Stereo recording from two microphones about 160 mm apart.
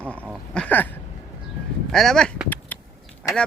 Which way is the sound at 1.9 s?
Centre (ahead or behind).